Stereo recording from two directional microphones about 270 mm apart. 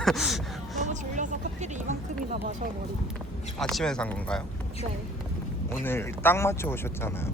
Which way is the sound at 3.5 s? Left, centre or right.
Centre.